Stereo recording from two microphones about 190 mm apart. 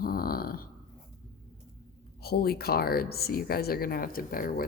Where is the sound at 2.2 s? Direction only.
55° left (ahead or behind).